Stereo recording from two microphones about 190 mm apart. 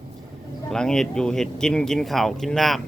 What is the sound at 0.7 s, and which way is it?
Speech, 5° left (ahead or behind).